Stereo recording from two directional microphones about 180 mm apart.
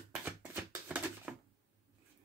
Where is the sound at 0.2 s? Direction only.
10° right (ahead or behind).